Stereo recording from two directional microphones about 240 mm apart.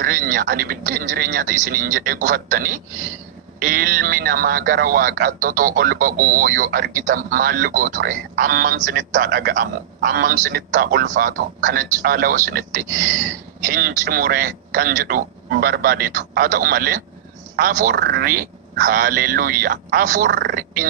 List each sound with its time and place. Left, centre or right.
0.0 s a man's voice: right